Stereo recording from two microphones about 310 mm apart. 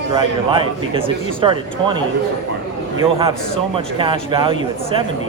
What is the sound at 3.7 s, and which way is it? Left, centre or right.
Speech, centre.